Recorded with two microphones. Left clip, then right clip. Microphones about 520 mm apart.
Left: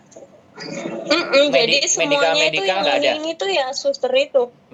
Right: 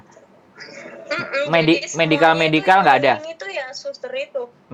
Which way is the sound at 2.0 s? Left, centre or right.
Right.